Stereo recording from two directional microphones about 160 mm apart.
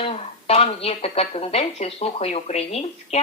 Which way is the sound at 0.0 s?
40° left (ahead or behind).